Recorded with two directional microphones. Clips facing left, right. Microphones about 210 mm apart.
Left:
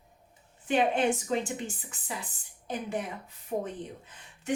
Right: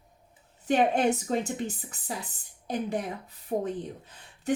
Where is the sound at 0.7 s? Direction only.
40° right (ahead or behind).